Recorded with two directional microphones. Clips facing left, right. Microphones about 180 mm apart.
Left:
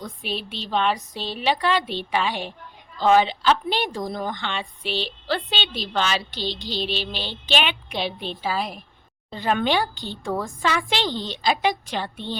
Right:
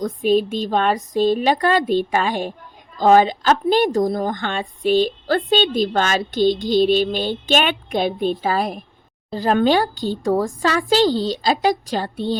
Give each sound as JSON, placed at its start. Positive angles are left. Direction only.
{"t": 0.0, "sound": "a woman's voice", "side_deg": -45}
{"t": 9.3, "sound": "a woman's voice", "side_deg": -40}